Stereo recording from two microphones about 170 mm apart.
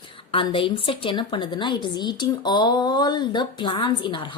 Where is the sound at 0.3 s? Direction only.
30° left (ahead or behind).